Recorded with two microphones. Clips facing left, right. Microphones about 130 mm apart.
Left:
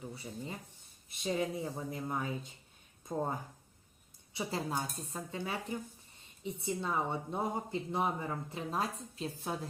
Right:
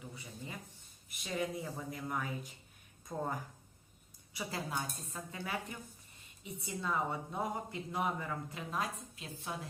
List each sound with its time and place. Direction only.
0.0 s a woman's voice: 30° left (ahead or behind)
4.4 s a woman's voice: 25° left (ahead or behind)